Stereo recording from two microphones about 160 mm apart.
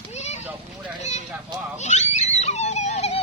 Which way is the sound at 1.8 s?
45° left (ahead or behind).